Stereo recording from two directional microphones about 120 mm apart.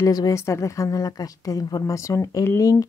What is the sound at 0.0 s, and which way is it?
Speech, 30° left (ahead or behind).